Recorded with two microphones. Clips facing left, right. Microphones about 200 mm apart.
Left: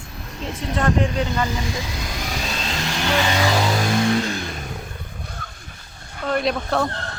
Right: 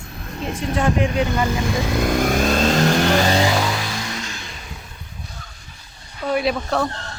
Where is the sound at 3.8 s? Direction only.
55° left (ahead or behind).